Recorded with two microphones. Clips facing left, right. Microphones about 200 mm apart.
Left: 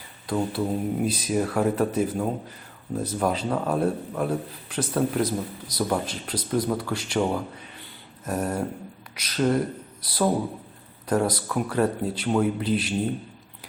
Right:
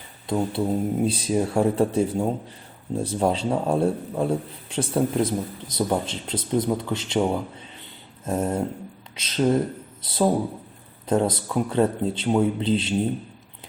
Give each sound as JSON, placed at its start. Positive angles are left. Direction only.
{"t": 0.3, "sound": "speech", "side_deg": -25}